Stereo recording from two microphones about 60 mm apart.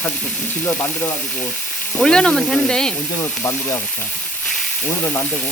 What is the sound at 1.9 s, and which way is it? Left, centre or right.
Speech, centre.